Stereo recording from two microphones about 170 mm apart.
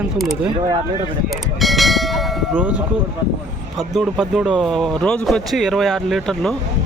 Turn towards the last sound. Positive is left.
turn(degrees=0)  # may be behind; listen again after turning